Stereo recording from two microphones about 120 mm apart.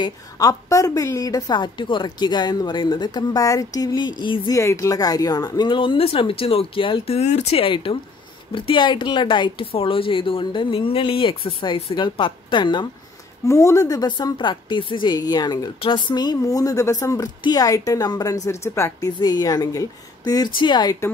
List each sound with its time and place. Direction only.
0.0 s a woman's voice: 30° left (ahead or behind)
4.6 s speech: 25° left (ahead or behind); by 12.8 s 40° left (ahead or behind)
13.5 s a woman's voice: 25° left (ahead or behind)